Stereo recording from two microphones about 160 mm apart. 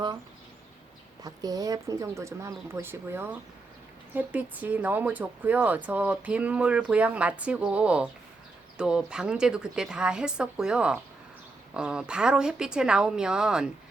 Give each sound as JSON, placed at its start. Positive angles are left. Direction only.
{"t": 1.2, "sound": "speech", "side_deg": -25}